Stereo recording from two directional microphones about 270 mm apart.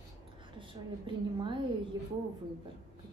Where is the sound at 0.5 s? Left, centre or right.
Centre.